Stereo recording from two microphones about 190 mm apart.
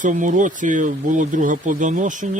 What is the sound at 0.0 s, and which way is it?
Speech, 40° right (ahead or behind).